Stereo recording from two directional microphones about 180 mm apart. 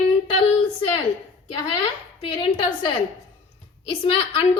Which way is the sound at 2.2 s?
30° left (ahead or behind).